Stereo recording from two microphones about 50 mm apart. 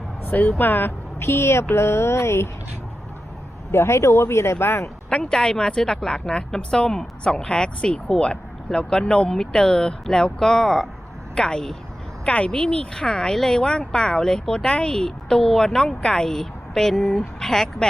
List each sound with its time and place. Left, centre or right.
0.3 s speech: left
1.2 s speech: left
3.7 s speech: left
4.8 s speech: centre
12.2 s speech: left